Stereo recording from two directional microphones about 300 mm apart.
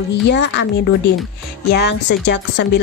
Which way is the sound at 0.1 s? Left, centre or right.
Left.